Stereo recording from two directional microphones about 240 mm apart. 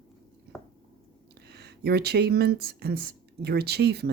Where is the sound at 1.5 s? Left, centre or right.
Right.